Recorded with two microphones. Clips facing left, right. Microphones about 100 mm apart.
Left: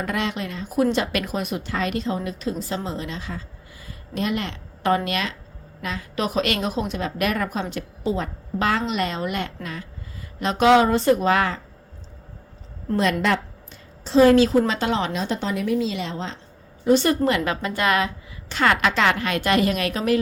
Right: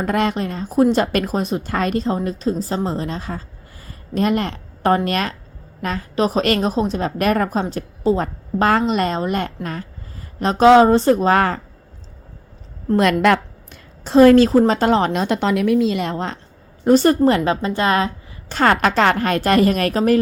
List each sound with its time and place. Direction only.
0.0 s a woman's voice: 45° right (ahead or behind)
3.8 s a sound: 45° right (ahead or behind)
5.0 s a woman's voice: 45° right (ahead or behind)
13.0 s a woman's voice: 60° right (ahead or behind); by 15.2 s 45° right (ahead or behind)
15.2 s a woman's voice: 70° right (ahead or behind)
16.8 s a woman's voice: 45° right (ahead or behind)